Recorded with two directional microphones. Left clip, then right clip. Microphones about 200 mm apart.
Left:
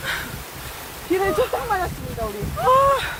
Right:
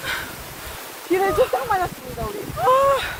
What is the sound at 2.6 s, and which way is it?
Speech, 5° left (ahead or behind).